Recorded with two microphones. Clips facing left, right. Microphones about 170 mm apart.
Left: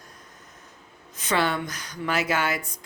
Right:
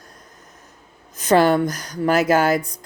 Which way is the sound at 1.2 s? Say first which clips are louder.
Right 10 dB; 45° right (ahead or behind).